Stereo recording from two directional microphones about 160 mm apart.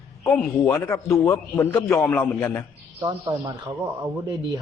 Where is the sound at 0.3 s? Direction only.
10° left (ahead or behind).